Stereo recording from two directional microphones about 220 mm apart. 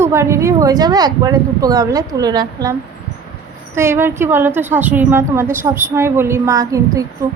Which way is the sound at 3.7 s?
10° right (ahead or behind).